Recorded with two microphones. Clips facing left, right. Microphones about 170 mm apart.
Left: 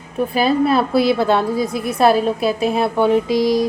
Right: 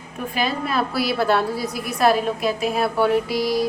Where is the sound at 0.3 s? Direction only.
30° left (ahead or behind).